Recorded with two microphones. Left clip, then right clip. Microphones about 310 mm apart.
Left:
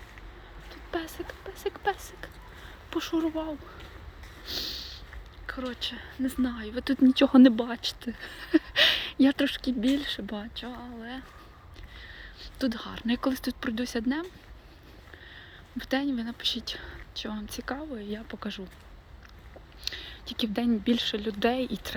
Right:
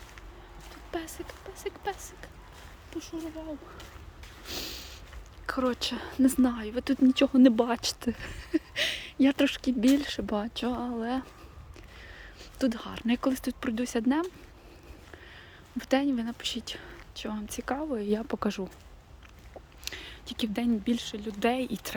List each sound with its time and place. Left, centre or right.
0.7 s speech: centre
4.4 s a sound: centre
5.5 s a woman's voice: centre
15.8 s a woman's voice: centre
19.8 s speech: centre